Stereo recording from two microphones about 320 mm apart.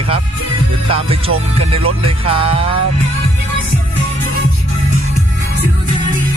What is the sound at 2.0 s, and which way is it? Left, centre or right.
Music, centre.